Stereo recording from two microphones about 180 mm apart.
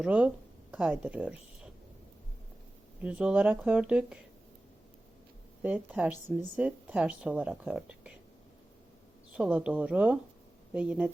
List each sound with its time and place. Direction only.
0.0 s speech: 5° right (ahead or behind)
3.0 s speech: 5° right (ahead or behind)
5.6 s speech: 10° right (ahead or behind)
9.3 s speech: 5° right (ahead or behind)